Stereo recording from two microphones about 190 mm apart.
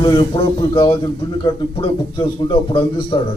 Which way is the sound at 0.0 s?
25° left (ahead or behind).